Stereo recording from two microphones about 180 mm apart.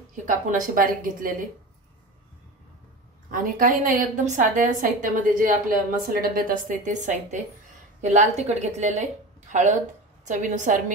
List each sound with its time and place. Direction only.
0.1 s a woman's voice: 45° right (ahead or behind)
3.3 s a woman's voice: 50° right (ahead or behind)